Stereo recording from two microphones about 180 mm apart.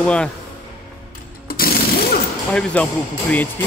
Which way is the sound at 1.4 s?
55° left (ahead or behind).